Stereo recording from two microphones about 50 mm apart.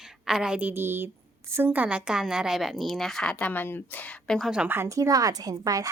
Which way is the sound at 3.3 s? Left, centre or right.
Left.